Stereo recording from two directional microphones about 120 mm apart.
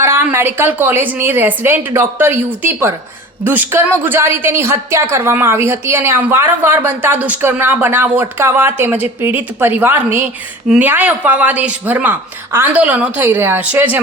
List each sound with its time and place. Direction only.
0.0 s a woman's voice: 20° right (ahead or behind)